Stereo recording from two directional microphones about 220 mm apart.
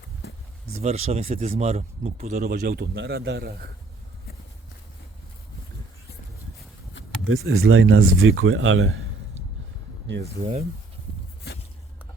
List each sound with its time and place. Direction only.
0.2 s a sound: 50° left (ahead or behind)
0.7 s speech: 30° right (ahead or behind)
2.3 s a man's voice: 40° right (ahead or behind)
7.3 s speech: 70° right (ahead or behind)
10.2 s speech: 30° right (ahead or behind)
11.5 s a sound: 50° left (ahead or behind)